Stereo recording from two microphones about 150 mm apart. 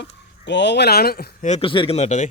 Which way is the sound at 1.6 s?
35° left (ahead or behind).